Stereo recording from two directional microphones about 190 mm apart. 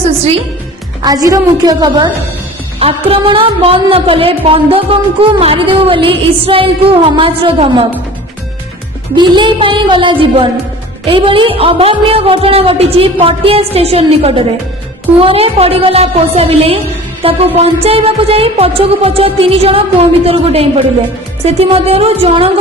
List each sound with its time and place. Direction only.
0.0 s music: 30° right (ahead or behind)
1.0 s a woman's voice: 20° right (ahead or behind)
9.1 s a woman's voice: 25° right (ahead or behind)
15.2 s music: 30° right (ahead or behind)